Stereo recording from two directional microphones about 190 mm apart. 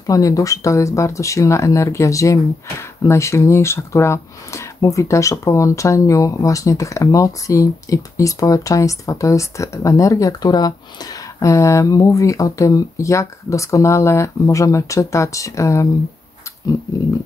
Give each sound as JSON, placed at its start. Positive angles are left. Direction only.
{"t": 0.0, "sound": "speech", "side_deg": 15}